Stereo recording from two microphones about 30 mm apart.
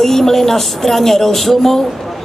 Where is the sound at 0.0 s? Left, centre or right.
Centre.